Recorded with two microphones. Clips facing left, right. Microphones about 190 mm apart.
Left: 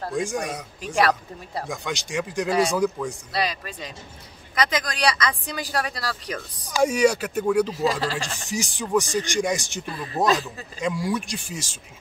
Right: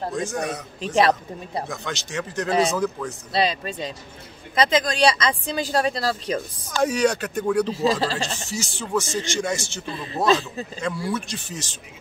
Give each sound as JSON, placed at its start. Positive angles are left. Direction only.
{"t": 0.1, "sound": "speech", "side_deg": 10}
{"t": 0.9, "sound": "speech", "side_deg": -20}
{"t": 1.7, "sound": "speech", "side_deg": 10}
{"t": 3.3, "sound": "speech", "side_deg": -25}
{"t": 6.7, "sound": "speech", "side_deg": 10}
{"t": 7.7, "sound": "speech", "side_deg": -30}
{"t": 8.5, "sound": "speech", "side_deg": 15}
{"t": 10.2, "sound": "speech", "side_deg": -25}
{"t": 10.8, "sound": "speech", "side_deg": 15}